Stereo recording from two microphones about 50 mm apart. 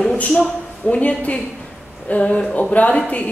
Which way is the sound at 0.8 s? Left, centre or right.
Left.